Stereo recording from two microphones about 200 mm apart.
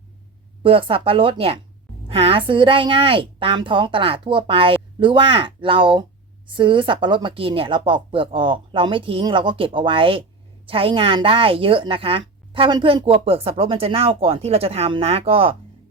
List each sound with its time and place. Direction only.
0.6 s a woman's voice: 25° right (ahead or behind)